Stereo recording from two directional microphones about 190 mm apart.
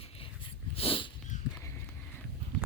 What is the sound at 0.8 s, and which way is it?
Dog, 30° left (ahead or behind).